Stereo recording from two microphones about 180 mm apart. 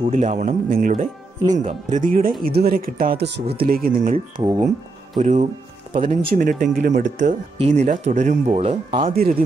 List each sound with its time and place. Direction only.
0.1 s speech: 40° right (ahead or behind); by 3.4 s 70° right (ahead or behind)
3.5 s speech: 55° right (ahead or behind)
4.4 s speech: 20° right (ahead or behind)
5.1 s speech: 40° right (ahead or behind)
5.9 s speech: 50° right (ahead or behind)
9.1 s speech: 55° right (ahead or behind)